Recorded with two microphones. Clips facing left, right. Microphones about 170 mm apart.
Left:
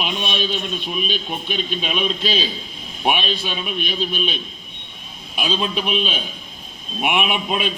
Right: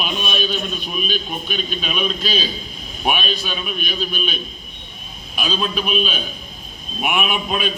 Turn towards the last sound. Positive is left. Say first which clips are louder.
# even
turn(degrees=25)  # may be behind; listen again after turning